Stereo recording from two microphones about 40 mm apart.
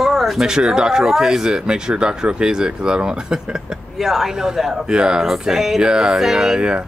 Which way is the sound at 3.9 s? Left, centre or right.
Centre.